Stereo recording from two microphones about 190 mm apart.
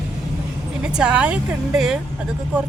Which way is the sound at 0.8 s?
5° right (ahead or behind).